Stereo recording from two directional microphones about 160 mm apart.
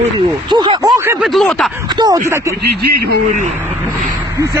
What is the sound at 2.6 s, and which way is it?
Speech, 80° right.